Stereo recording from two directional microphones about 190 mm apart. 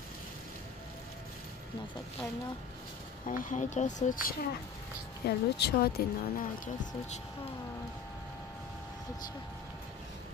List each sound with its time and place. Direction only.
3.3 s speech: 45° left (ahead or behind)